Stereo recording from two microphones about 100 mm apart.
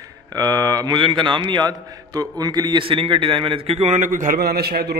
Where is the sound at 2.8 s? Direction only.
60° right (ahead or behind).